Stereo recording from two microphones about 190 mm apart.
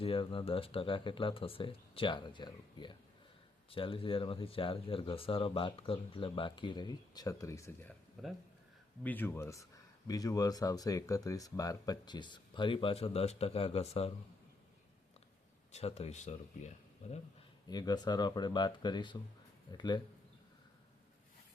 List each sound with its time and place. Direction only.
0.0 s speech: 25° left (ahead or behind)
8.2 s speech: centre (ahead or behind)
9.0 s speech: 10° left (ahead or behind); by 14.1 s 30° left (ahead or behind)
15.7 s speech: 35° left (ahead or behind)
17.7 s speech: 20° left (ahead or behind)